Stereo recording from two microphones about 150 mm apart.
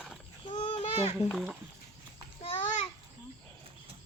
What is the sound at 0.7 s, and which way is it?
Children playing, 45° left (ahead or behind).